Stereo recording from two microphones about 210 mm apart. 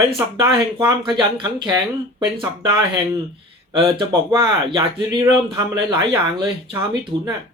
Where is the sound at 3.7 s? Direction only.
20° right (ahead or behind).